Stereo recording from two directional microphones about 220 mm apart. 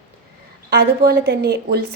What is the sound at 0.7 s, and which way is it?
A woman's voice, 45° right (ahead or behind).